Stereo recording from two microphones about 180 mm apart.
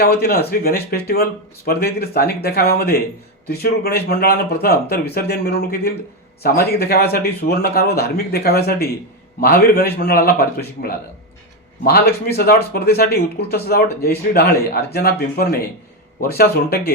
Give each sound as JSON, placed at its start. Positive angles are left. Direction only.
{"t": 0.0, "sound": "speech", "side_deg": 60}
{"t": 11.8, "sound": "speech", "side_deg": 55}